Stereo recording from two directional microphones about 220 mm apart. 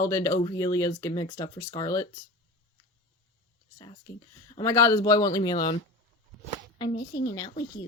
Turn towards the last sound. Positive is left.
turn(degrees=15)  # may be behind; listen again after turning